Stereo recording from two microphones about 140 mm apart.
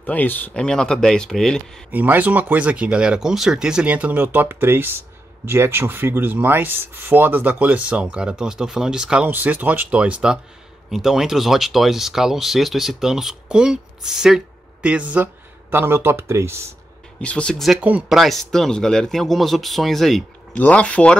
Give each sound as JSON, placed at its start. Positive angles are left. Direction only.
{"t": 0.0, "sound": "speech", "side_deg": 10}
{"t": 1.9, "sound": "speech", "side_deg": -10}
{"t": 17.2, "sound": "speech", "side_deg": 10}